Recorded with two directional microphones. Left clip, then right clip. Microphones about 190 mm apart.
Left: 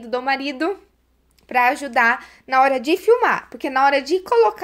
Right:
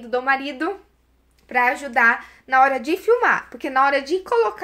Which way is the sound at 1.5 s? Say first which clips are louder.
Left 2 dB; 50° left (ahead or behind).